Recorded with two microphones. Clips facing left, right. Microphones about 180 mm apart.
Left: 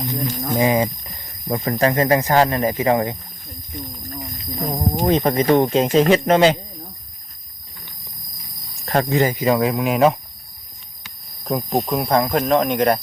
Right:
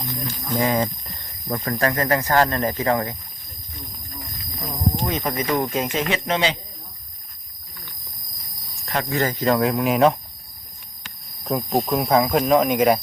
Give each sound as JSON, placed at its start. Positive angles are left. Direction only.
{"t": 0.1, "sound": "speech", "side_deg": 15}
{"t": 4.6, "sound": "speech", "side_deg": 45}
{"t": 5.0, "sound": "speech", "side_deg": 35}
{"t": 9.0, "sound": "speech", "side_deg": 15}
{"t": 11.4, "sound": "speech", "side_deg": 0}